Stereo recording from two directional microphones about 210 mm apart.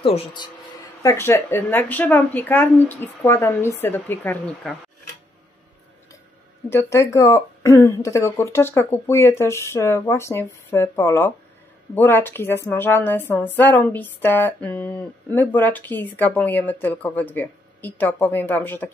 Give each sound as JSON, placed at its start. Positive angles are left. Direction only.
{"t": 0.0, "sound": "speech", "side_deg": 25}
{"t": 1.0, "sound": "a woman's voice", "side_deg": 10}
{"t": 6.7, "sound": "a woman's voice", "side_deg": 10}